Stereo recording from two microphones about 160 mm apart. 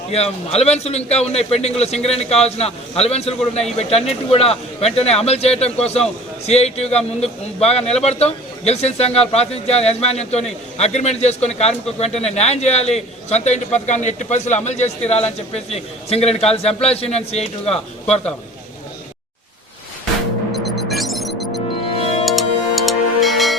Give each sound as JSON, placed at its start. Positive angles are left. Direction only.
{"t": 0.1, "sound": "a man's voice", "side_deg": 40}
{"t": 18.0, "sound": "a man's voice", "side_deg": 5}
{"t": 20.9, "sound": "music", "side_deg": 0}